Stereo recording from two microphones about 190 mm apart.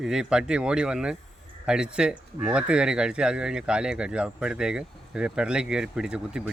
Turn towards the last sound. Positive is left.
turn(degrees=-5)  # may be behind; listen again after turning